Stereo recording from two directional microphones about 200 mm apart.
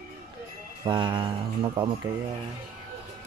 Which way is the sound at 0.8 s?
20° right (ahead or behind).